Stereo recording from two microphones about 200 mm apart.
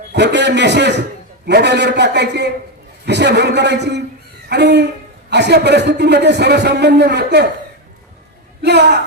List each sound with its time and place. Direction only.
0.1 s a man's voice: 60° right (ahead or behind)
4.4 s a sound: 60° right (ahead or behind)
5.3 s a man's voice: 55° right (ahead or behind)
8.6 s a man's voice: 60° right (ahead or behind)